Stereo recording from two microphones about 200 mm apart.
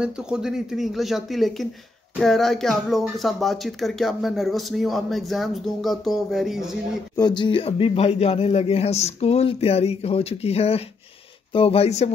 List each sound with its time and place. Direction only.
0.0 s speech: 5° right (ahead or behind)
7.2 s speech: 20° left (ahead or behind)